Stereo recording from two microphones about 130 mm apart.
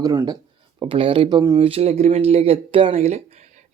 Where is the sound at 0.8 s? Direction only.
45° right (ahead or behind).